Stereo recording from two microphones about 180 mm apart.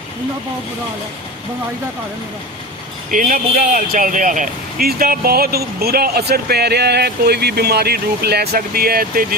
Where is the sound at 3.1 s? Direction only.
50° right (ahead or behind).